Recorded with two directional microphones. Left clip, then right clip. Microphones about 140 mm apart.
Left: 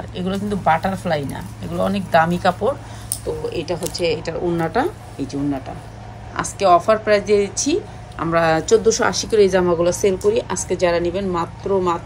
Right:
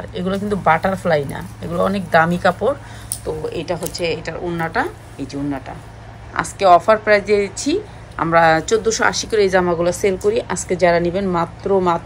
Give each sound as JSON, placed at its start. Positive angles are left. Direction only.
{"t": 0.1, "sound": "a woman's voice", "side_deg": 10}